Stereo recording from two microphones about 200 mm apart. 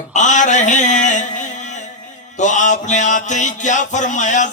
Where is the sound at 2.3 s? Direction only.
35° left (ahead or behind).